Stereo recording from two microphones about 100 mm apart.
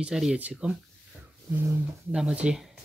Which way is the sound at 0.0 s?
10° right (ahead or behind).